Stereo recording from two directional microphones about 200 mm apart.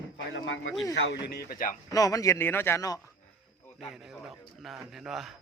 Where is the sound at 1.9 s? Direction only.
15° left (ahead or behind).